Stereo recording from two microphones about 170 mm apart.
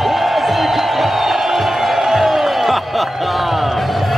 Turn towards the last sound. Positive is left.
turn(degrees=0)  # may be behind; listen again after turning